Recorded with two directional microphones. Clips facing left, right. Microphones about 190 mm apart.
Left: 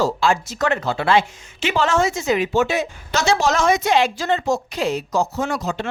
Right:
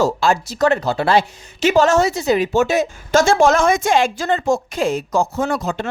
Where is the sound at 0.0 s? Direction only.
40° right (ahead or behind).